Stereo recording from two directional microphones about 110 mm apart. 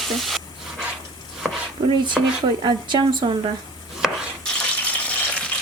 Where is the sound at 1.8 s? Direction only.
40° right (ahead or behind).